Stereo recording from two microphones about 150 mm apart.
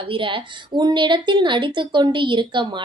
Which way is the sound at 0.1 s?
35° right (ahead or behind).